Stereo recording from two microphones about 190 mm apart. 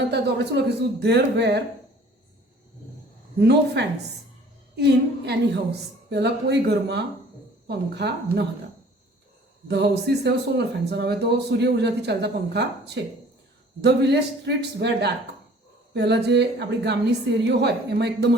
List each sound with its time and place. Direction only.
0.0 s a woman's voice: 65° right (ahead or behind)
3.4 s a woman's voice: 60° right (ahead or behind)
9.6 s a woman's voice: 60° right (ahead or behind)